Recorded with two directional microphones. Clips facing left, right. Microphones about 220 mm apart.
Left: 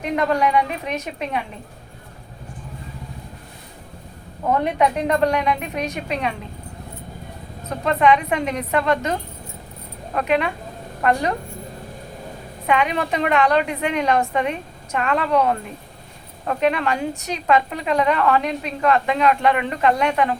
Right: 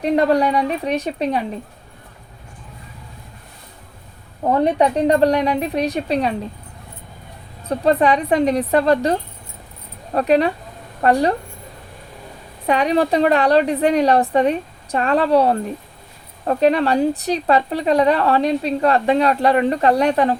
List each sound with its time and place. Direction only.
0.0 s speech: 35° right (ahead or behind)
4.6 s speech: 35° right (ahead or behind)
7.7 s speech: 35° right (ahead or behind)
10.2 s speech: 35° right (ahead or behind)
12.6 s speech: 35° right (ahead or behind)